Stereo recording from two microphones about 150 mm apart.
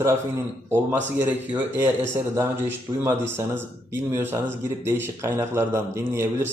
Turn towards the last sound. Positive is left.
turn(degrees=-20)  # may be behind; listen again after turning